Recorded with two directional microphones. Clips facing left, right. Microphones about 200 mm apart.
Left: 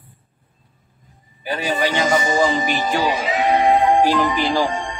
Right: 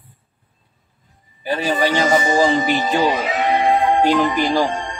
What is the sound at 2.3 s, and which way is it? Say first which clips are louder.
Music: right 2 dB; 25° right (ahead or behind).